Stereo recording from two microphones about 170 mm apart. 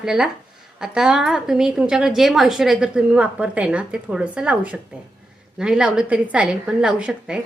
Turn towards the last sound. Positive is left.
turn(degrees=-5)  # may be behind; listen again after turning